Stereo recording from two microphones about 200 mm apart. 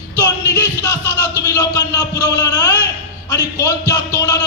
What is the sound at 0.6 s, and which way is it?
Music, 15° left (ahead or behind).